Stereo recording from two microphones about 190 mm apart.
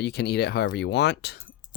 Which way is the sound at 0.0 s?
60° left (ahead or behind).